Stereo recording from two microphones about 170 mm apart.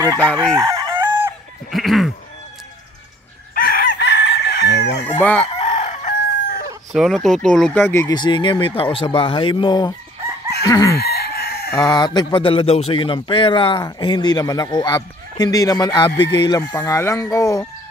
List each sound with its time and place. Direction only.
0.1 s chicken: 10° left (ahead or behind)
0.6 s chicken: 25° right (ahead or behind)
1.7 s speech: centre (ahead or behind)
3.5 s chicken: 55° left (ahead or behind)
4.0 s chicken: 90° left
5.2 s chicken: 10° left (ahead or behind)
5.6 s chicken: 40° left (ahead or behind)
6.9 s speech: centre (ahead or behind)
8.1 s speech: 25° left (ahead or behind)
11.0 s chicken: 70° left (ahead or behind)
11.7 s speech: 20° left (ahead or behind)